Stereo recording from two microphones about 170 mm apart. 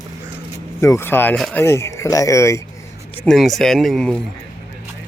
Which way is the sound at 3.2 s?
Centre (ahead or behind).